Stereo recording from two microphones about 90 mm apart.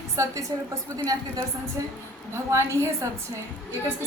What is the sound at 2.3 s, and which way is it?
Speech, 30° right (ahead or behind).